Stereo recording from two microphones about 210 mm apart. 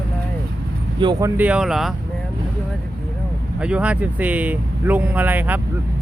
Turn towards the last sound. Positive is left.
turn(degrees=-10)  # may be behind; listen again after turning